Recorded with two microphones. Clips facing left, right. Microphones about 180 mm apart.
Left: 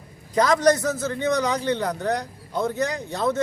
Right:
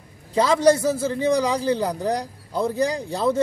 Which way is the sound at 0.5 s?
30° right (ahead or behind).